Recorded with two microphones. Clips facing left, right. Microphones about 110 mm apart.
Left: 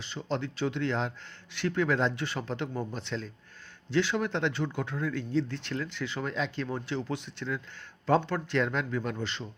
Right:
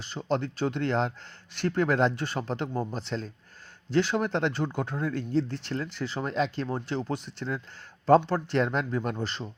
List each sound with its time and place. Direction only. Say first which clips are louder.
0.0 s speech: right 4 dB; 45° right (ahead or behind)